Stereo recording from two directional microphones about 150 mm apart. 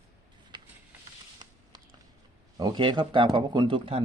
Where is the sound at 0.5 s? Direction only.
30° right (ahead or behind).